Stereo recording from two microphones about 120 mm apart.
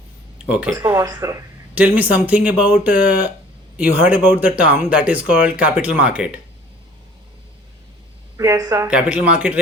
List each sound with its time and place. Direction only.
0.4 s speech: 10° right (ahead or behind)
0.9 s speech: 30° right (ahead or behind)
1.7 s speech: 15° right (ahead or behind)
8.4 s speech: 30° right (ahead or behind)
8.9 s speech: 10° right (ahead or behind)